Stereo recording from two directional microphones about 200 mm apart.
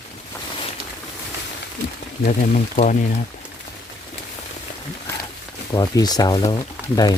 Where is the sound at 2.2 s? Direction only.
35° left (ahead or behind).